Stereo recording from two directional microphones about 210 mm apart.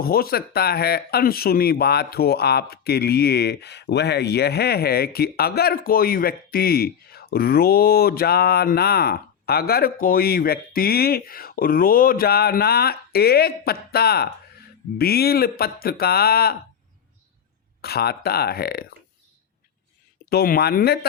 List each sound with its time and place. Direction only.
0.0 s a man's voice: 45° left (ahead or behind)
17.8 s a man's voice: 50° left (ahead or behind)
20.3 s a man's voice: 45° left (ahead or behind)